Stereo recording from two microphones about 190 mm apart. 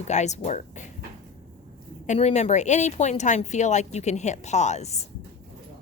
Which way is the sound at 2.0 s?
35° left (ahead or behind).